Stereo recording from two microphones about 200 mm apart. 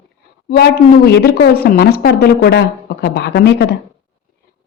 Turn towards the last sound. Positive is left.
turn(degrees=55)  # may be behind; listen again after turning